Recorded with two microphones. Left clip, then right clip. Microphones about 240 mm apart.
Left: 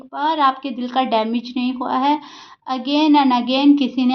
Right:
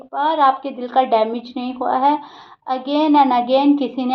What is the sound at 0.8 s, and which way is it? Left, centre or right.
A woman's voice, left.